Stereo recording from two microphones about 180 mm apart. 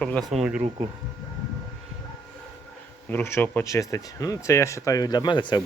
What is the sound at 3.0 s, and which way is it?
Speech, 10° left (ahead or behind).